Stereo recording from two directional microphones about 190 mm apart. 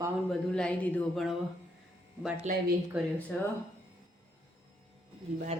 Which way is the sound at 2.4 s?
40° right (ahead or behind).